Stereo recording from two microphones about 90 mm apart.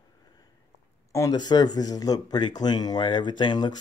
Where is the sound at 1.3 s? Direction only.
50° left (ahead or behind).